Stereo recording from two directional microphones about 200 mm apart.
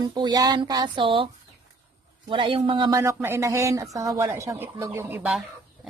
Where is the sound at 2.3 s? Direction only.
25° right (ahead or behind).